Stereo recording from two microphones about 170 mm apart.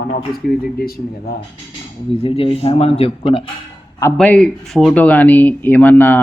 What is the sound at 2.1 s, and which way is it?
Speech, 35° left (ahead or behind).